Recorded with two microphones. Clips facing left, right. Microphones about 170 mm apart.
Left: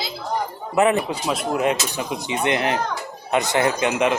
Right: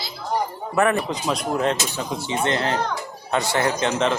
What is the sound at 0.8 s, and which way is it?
Speech, 20° left (ahead or behind).